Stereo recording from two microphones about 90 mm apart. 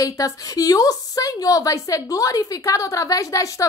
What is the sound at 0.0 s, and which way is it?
A woman's voice, 40° left (ahead or behind).